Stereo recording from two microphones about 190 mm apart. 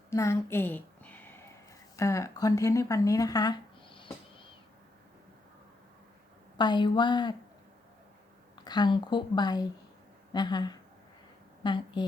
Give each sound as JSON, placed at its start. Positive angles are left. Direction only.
{"t": 0.1, "sound": "a woman's voice", "side_deg": 15}
{"t": 6.6, "sound": "speech", "side_deg": 25}
{"t": 8.6, "sound": "a woman's voice", "side_deg": 20}